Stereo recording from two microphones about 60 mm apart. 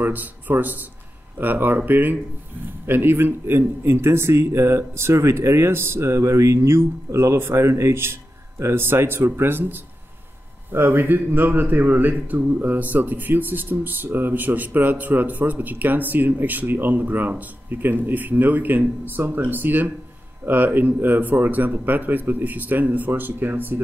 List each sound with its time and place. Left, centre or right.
0.0 s a man's voice: right